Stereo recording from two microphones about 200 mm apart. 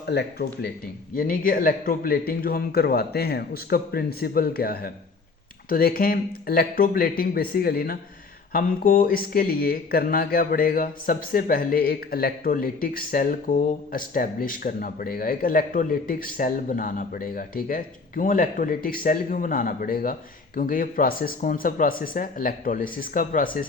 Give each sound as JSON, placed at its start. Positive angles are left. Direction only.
{"t": 0.1, "sound": "speech", "side_deg": 55}